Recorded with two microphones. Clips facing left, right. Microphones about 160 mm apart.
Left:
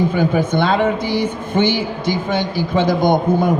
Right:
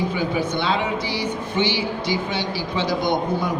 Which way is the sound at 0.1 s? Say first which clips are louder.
Left 6 dB; 50° left (ahead or behind).